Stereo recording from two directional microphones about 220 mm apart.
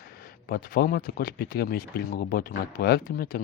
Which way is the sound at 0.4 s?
45° left (ahead or behind).